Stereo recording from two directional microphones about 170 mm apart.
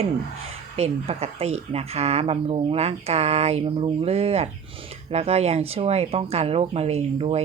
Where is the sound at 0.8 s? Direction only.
40° right (ahead or behind).